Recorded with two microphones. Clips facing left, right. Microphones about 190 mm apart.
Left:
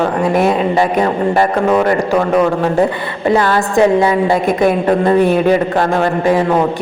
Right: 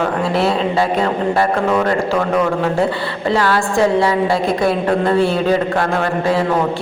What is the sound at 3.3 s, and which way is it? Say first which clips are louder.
Speech: left 3 dB; 20° left (ahead or behind).